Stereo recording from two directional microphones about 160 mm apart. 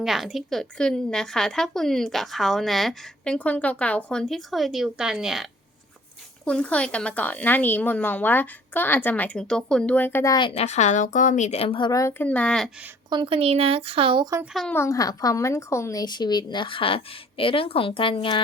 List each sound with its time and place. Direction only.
0.0 s a woman's voice: centre (ahead or behind); by 10.3 s 15° left (ahead or behind)
10.3 s a woman's voice: 35° left (ahead or behind)
11.9 s a woman's voice: 20° left (ahead or behind); by 12.7 s 5° left (ahead or behind)
13.1 s a woman's voice: 30° right (ahead or behind)
14.5 s a woman's voice: 5° left (ahead or behind)
14.8 s a woman's voice: 20° left (ahead or behind)